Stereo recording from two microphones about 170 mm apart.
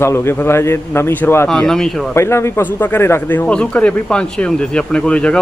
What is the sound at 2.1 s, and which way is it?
Speech, 15° left (ahead or behind).